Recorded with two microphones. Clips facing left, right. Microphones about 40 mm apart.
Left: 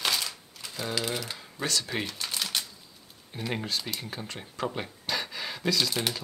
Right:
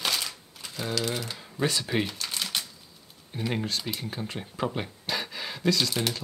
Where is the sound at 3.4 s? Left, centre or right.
Centre.